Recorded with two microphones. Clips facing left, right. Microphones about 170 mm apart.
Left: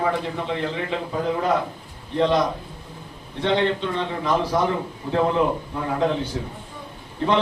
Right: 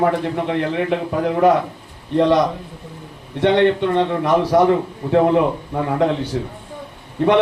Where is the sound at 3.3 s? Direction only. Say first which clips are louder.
Right 7 dB; 65° right (ahead or behind).